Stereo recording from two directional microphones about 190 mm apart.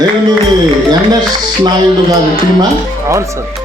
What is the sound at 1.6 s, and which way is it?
A man's voice, 20° right (ahead or behind).